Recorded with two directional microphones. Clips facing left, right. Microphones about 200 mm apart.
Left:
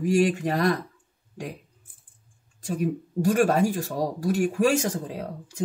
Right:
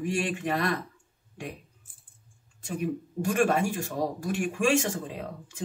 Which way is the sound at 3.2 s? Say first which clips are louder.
Left 4 dB; 40° left (ahead or behind).